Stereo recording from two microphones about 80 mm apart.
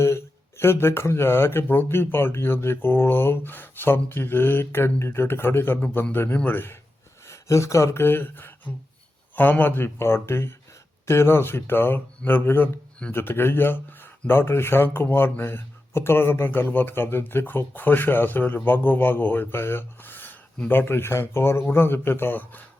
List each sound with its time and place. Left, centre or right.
0.0 s speech: left
7.3 s speech: left